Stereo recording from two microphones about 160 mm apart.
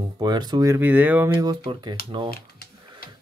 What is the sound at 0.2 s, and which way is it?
Speech, 25° right (ahead or behind).